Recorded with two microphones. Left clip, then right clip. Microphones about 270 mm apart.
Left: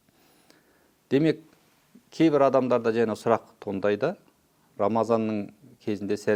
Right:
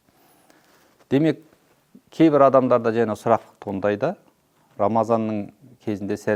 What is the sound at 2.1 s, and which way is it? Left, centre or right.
Speech, right.